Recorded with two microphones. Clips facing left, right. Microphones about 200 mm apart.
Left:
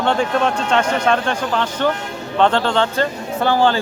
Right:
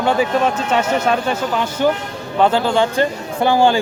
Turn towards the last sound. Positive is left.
turn(degrees=-15)  # may be behind; listen again after turning